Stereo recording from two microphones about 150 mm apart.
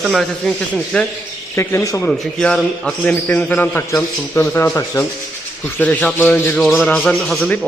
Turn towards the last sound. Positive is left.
turn(degrees=5)  # may be behind; listen again after turning